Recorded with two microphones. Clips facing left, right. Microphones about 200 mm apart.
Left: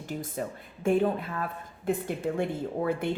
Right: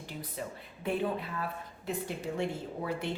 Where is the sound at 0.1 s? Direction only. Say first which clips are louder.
Left 7 dB; 45° left (ahead or behind).